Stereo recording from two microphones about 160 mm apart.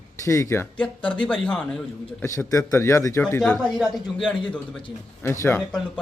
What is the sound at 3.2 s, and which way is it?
Speech, 5° left (ahead or behind).